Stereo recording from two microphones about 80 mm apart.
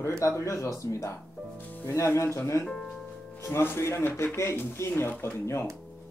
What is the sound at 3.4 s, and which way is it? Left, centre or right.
Speech, left.